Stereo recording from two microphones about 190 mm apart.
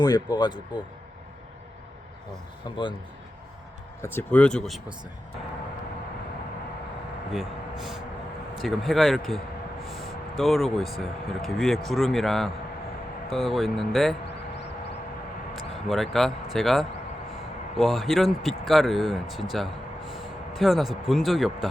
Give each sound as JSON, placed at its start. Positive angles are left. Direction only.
{"t": 0.0, "sound": "speech", "side_deg": 20}
{"t": 2.6, "sound": "speech", "side_deg": 25}
{"t": 4.0, "sound": "speech", "side_deg": 10}
{"t": 7.3, "sound": "speech", "side_deg": 0}
{"t": 15.9, "sound": "speech", "side_deg": 0}